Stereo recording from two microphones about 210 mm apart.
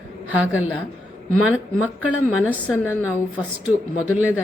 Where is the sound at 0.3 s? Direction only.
5° right (ahead or behind).